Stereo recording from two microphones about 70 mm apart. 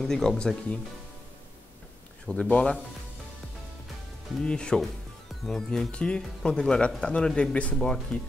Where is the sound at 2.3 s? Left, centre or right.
Centre.